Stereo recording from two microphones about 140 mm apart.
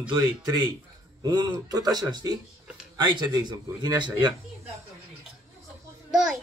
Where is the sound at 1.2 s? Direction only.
30° right (ahead or behind).